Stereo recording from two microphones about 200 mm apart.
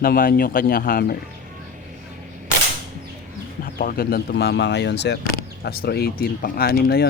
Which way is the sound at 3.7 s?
45° left (ahead or behind).